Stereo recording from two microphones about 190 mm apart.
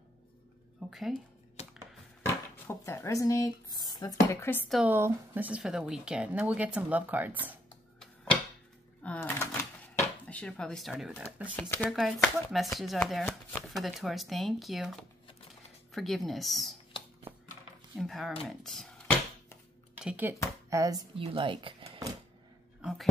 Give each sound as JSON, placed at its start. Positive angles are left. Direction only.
{"t": 0.7, "sound": "speech", "side_deg": 0}
{"t": 1.6, "sound": "a sound", "side_deg": 35}
{"t": 2.2, "sound": "speech", "side_deg": 15}
{"t": 4.6, "sound": "speech", "side_deg": 0}
{"t": 4.9, "sound": "speech", "side_deg": -10}
{"t": 9.0, "sound": "a sound", "side_deg": 10}
{"t": 11.9, "sound": "speech", "side_deg": 0}
{"t": 17.9, "sound": "speech", "side_deg": 0}
{"t": 22.8, "sound": "a sound", "side_deg": 0}